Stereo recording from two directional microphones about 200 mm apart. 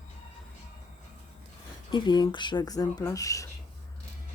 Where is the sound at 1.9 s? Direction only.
20° left (ahead or behind).